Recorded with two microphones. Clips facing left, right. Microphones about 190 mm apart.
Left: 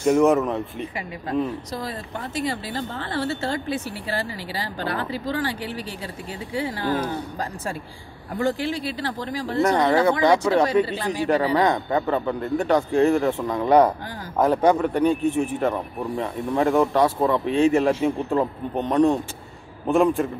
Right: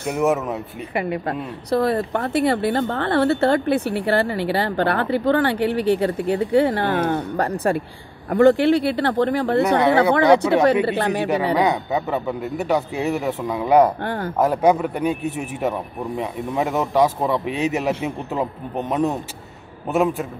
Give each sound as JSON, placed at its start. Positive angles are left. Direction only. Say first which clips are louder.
{"t": 0.2, "sound": "a man's voice", "louder": "left 2 dB", "side_deg": 0}
{"t": 0.9, "sound": "speech", "louder": "right 3 dB", "side_deg": -65}
{"t": 11.5, "sound": "speech", "louder": "right 1 dB", "side_deg": -10}
{"t": 14.0, "sound": "speech", "louder": "right 10 dB", "side_deg": -65}
{"t": 14.4, "sound": "a man's voice", "louder": "right 1 dB", "side_deg": -10}